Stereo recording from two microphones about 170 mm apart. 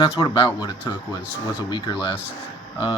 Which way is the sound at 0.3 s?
30° left (ahead or behind).